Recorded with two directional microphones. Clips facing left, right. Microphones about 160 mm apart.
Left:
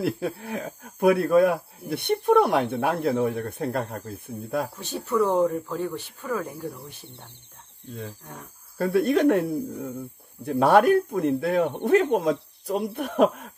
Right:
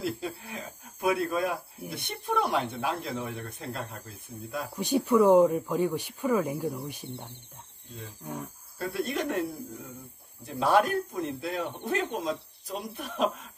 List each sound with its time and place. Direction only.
0.0 s speech: 60° left (ahead or behind)
4.7 s speech: 15° right (ahead or behind)
8.7 s speech: 60° left (ahead or behind)